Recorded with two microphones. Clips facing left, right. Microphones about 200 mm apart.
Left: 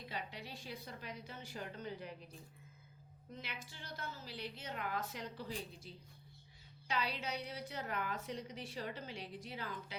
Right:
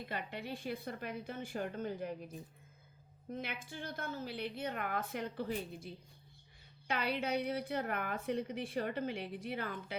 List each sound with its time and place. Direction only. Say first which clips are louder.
0.0 s a woman's voice: right 5 dB; 55° right (ahead or behind)
3.3 s a woman's voice: right 7 dB; 55° right (ahead or behind)